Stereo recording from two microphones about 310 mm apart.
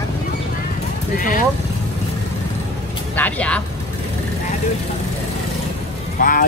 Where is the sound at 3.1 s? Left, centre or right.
Centre.